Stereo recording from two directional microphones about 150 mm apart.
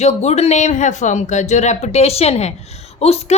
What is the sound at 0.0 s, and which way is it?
A woman's voice, 45° left (ahead or behind).